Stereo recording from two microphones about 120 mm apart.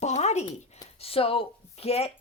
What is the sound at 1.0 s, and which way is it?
A woman's voice, 50° left (ahead or behind).